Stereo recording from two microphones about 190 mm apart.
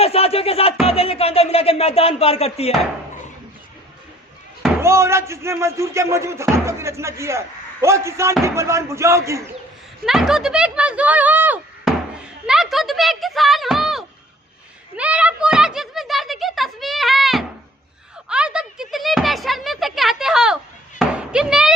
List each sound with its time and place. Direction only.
0.0 s music: 30° left (ahead or behind)
0.9 s speech: 30° left (ahead or behind)
4.8 s speech: 15° right (ahead or behind)
10.1 s speech: centre (ahead or behind)
21.0 s a sound: 5° right (ahead or behind)